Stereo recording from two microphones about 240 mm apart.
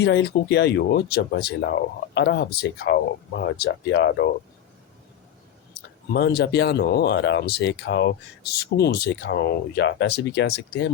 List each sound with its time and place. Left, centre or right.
0.0 s speech: left
6.1 s speech: left